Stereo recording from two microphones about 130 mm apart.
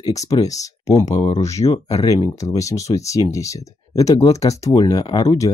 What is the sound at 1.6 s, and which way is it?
Speech, 40° left (ahead or behind).